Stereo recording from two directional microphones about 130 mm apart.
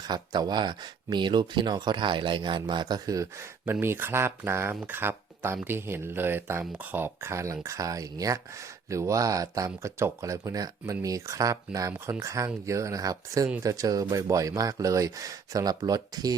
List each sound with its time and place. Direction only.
0.0 s speech: 30° right (ahead or behind)